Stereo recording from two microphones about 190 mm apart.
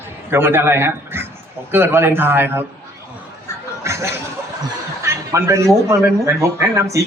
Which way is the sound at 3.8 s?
15° right (ahead or behind).